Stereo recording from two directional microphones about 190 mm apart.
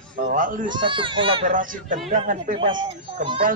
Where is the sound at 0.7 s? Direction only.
25° right (ahead or behind).